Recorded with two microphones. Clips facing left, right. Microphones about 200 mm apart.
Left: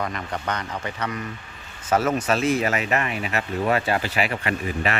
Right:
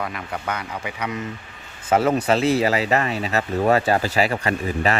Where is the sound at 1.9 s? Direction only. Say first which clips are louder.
Right 3 dB; 30° right (ahead or behind).